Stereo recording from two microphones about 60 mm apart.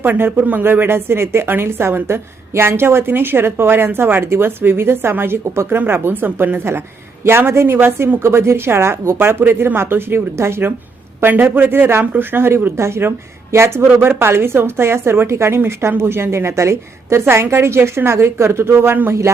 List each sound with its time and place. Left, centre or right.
0.0 s a woman's voice: right